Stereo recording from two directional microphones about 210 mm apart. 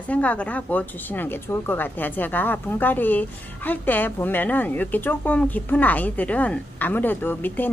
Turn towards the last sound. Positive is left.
turn(degrees=10)  # may be behind; listen again after turning